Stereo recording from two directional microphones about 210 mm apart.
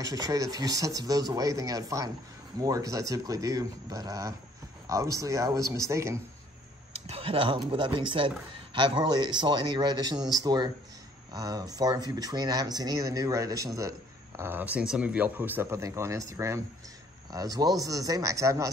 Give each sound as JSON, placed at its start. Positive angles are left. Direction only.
{"t": 0.0, "sound": "speech", "side_deg": -15}
{"t": 6.9, "sound": "speech", "side_deg": -30}